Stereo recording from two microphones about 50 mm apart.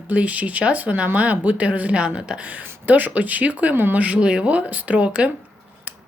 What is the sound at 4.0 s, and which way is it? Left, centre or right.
Speech, right.